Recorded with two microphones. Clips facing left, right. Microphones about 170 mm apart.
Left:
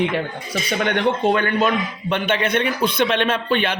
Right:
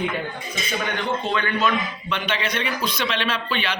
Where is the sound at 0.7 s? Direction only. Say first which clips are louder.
Left 6 dB; 70° left (ahead or behind).